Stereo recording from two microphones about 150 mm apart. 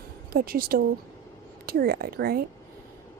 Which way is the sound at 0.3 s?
80° right.